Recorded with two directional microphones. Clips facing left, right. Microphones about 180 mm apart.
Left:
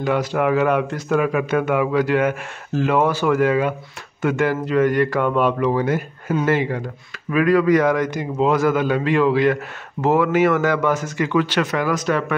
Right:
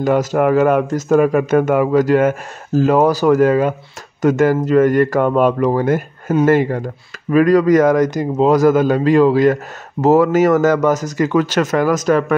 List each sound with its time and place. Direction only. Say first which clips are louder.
0.0 s a man's voice: right 5 dB; 45° right (ahead or behind)